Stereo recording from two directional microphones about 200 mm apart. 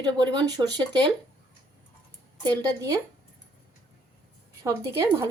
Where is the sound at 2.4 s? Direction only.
20° right (ahead or behind).